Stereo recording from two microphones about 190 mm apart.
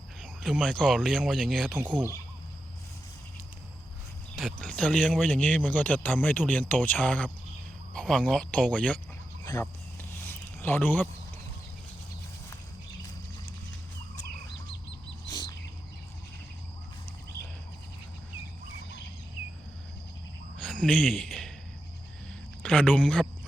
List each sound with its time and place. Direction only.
0.2 s speech: 5° left (ahead or behind)
4.4 s speech: centre (ahead or behind)
9.4 s a sound: 20° left (ahead or behind)
15.3 s bird: 20° left (ahead or behind)
20.6 s a sound: 5° left (ahead or behind)
22.6 s speech: 5° left (ahead or behind)